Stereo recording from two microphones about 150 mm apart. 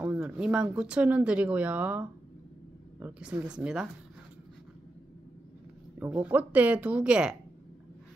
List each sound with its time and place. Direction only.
0.0 s speech: 10° right (ahead or behind)
5.9 s speech: 10° right (ahead or behind)